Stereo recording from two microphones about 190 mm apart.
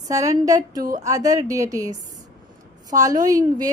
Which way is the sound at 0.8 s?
45° right (ahead or behind).